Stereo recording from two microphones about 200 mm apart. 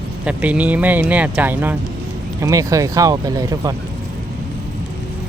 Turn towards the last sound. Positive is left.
turn(degrees=-15)  # may be behind; listen again after turning